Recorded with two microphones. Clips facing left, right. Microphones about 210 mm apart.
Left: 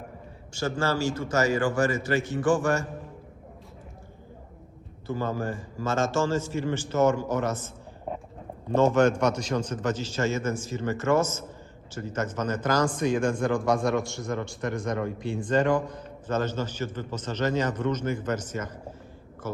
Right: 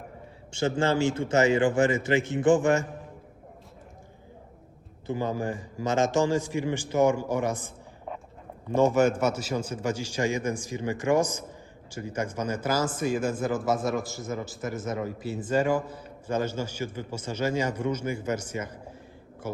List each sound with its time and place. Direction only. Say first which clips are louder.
0.6 s a man's voice: right 3 dB; 20° right (ahead or behind)
5.0 s speech: even; 15° right (ahead or behind)
8.7 s speech: left 1 dB; 10° right (ahead or behind)